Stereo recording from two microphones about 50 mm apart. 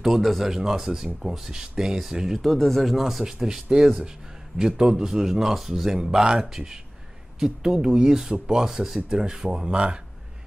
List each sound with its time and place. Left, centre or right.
0.0 s speech: centre
2.5 s speech: centre; by 9.9 s right